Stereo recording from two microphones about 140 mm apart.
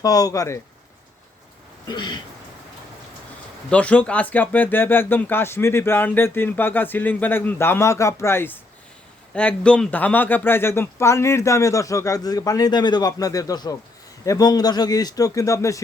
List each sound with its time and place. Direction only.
0.0 s a man's voice: 25° left (ahead or behind)
1.9 s a sound: 35° left (ahead or behind)
3.7 s a man's voice: 10° left (ahead or behind)